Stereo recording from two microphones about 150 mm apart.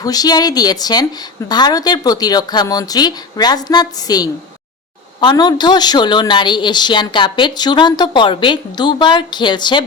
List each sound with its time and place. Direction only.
0.0 s a woman's voice: 25° left (ahead or behind)